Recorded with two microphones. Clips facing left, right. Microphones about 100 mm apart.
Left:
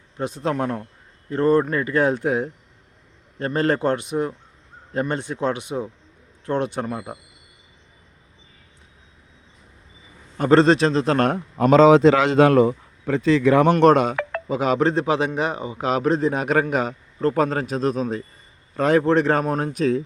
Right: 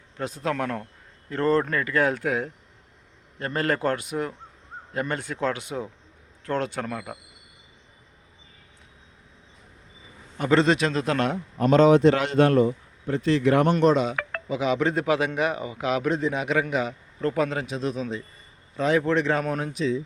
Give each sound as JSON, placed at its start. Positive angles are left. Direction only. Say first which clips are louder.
{"t": 0.2, "sound": "speech", "louder": "left 4 dB", "side_deg": 20}
{"t": 10.3, "sound": "a man's voice", "louder": "left 5 dB", "side_deg": 35}
{"t": 11.2, "sound": "a man's voice", "louder": "left 5 dB", "side_deg": 50}
{"t": 11.5, "sound": "a man's voice", "louder": "left 4 dB", "side_deg": 90}
{"t": 13.7, "sound": "speech", "louder": "left 5 dB", "side_deg": 65}
{"t": 14.4, "sound": "a man's voice", "louder": "left 4 dB", "side_deg": 45}
{"t": 14.9, "sound": "a man's voice", "louder": "left 2 dB", "side_deg": 30}